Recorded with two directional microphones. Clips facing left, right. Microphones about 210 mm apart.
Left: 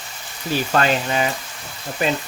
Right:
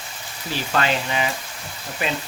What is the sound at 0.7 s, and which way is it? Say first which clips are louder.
Speech: left 2 dB; 40° left (ahead or behind).